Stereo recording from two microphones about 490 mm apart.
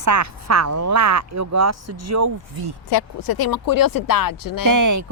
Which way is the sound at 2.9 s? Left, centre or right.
Left.